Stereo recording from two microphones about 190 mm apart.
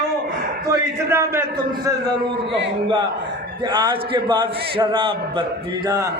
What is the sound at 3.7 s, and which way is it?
A man's voice, 25° right (ahead or behind).